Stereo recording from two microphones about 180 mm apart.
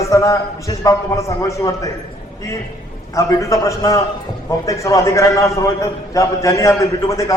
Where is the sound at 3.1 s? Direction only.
15° left (ahead or behind).